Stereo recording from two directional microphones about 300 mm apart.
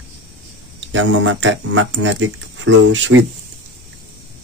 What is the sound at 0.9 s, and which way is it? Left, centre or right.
Speech, right.